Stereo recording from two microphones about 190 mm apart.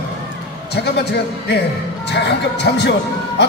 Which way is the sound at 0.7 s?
60° left (ahead or behind).